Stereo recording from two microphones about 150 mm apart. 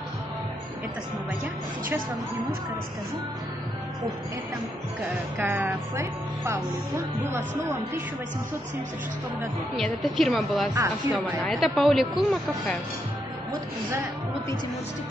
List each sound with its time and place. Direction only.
5.4 s speech: 15° right (ahead or behind)
9.8 s a woman's voice: centre (ahead or behind)
10.7 s speech: 20° right (ahead or behind)
11.4 s a woman's voice: centre (ahead or behind)